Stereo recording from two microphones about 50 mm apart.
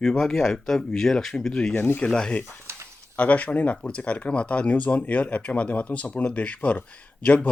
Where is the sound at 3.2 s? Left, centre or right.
Left.